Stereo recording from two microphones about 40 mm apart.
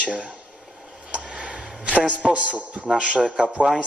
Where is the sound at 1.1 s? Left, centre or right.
Right.